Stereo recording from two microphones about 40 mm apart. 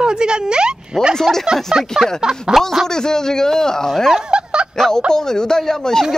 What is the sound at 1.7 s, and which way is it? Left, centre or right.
Speech, right.